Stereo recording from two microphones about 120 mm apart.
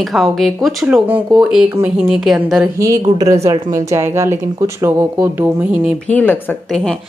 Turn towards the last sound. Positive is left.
turn(degrees=10)  # may be behind; listen again after turning